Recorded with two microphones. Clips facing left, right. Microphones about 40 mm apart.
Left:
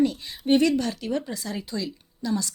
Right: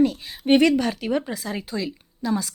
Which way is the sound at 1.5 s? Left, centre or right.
Right.